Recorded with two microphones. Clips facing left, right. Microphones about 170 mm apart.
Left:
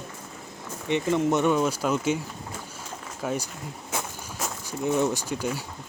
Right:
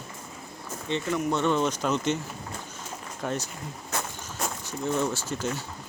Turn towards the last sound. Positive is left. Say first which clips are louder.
# left 2 dB
turn(degrees=10)  # may be behind; listen again after turning